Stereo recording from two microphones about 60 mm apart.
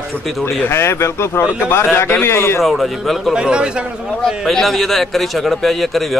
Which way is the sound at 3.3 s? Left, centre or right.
Centre.